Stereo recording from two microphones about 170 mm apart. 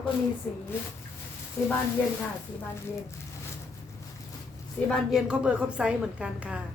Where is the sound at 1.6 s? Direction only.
10° left (ahead or behind).